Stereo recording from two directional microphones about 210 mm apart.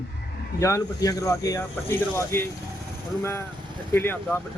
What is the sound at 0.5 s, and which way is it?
A man's voice, 15° left (ahead or behind).